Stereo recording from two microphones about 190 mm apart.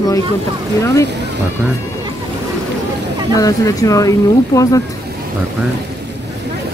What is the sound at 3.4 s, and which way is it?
Speech, 20° left (ahead or behind).